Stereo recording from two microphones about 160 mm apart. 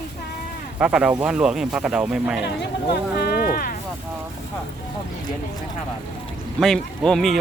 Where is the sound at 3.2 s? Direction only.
70° left (ahead or behind).